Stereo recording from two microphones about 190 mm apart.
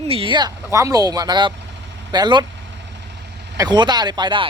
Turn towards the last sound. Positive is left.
turn(degrees=-25)  # may be behind; listen again after turning